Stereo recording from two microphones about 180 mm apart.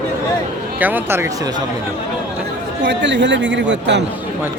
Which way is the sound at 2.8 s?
80° right.